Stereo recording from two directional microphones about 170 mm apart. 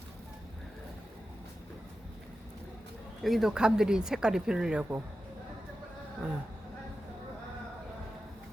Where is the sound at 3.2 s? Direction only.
Centre (ahead or behind).